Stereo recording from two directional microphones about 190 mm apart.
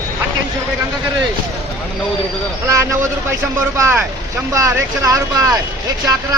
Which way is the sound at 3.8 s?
10° right (ahead or behind).